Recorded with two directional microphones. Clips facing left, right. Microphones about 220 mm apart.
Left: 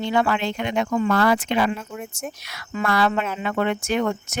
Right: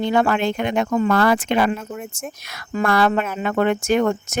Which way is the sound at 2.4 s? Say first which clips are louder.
Right 4 dB; 45° right (ahead or behind).